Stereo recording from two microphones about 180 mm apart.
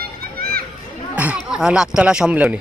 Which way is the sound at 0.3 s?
55° right (ahead or behind).